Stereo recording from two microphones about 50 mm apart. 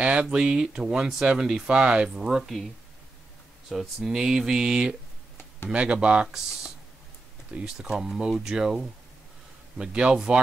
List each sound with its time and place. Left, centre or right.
0.0 s speech: right
3.6 s speech: centre